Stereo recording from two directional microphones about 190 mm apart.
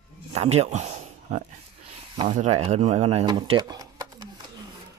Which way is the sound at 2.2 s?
40° right (ahead or behind).